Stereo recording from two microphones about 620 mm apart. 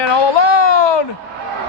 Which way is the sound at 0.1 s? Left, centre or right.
Left.